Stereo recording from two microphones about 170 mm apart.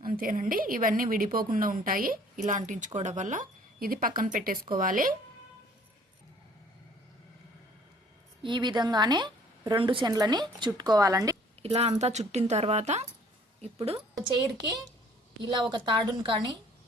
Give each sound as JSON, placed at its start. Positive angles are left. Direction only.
{"t": 0.0, "sound": "speech", "side_deg": -55}
{"t": 8.4, "sound": "a woman's voice", "side_deg": -25}
{"t": 11.6, "sound": "a woman's voice", "side_deg": -35}